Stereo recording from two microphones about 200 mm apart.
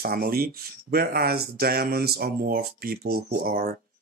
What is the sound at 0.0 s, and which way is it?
Speech, 50° right (ahead or behind).